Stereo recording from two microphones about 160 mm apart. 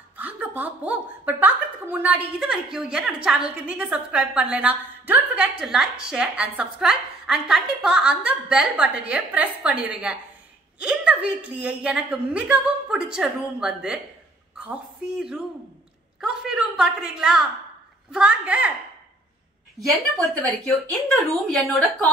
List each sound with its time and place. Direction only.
0.2 s a woman's voice: 10° right (ahead or behind)
20.4 s a woman's voice: 5° left (ahead or behind)